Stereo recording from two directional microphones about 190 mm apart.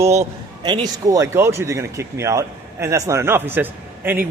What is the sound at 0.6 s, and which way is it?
Speech, 20° right (ahead or behind).